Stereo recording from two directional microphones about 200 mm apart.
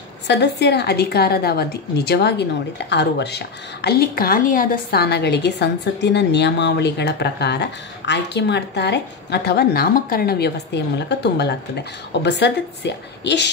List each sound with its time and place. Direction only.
0.3 s a woman's voice: 60° left (ahead or behind)